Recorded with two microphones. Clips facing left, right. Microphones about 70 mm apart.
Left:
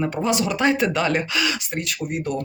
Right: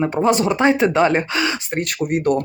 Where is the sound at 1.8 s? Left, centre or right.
Right.